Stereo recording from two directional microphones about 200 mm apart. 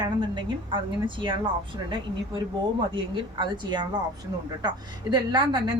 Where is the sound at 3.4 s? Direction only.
20° right (ahead or behind).